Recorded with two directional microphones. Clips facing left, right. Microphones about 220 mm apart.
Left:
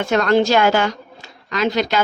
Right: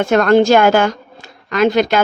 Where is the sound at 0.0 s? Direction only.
50° right (ahead or behind).